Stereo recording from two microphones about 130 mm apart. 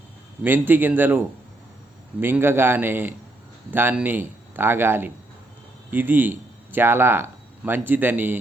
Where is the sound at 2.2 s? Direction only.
15° right (ahead or behind).